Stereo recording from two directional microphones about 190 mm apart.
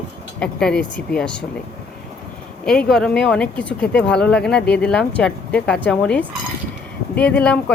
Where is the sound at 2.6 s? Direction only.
5° left (ahead or behind).